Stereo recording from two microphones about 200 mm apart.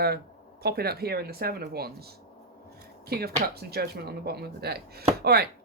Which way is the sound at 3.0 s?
50° right (ahead or behind).